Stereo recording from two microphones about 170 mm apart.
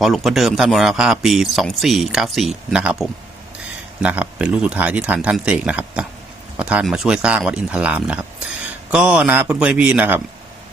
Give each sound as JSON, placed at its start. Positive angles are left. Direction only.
{"t": 0.0, "sound": "speech", "side_deg": 0}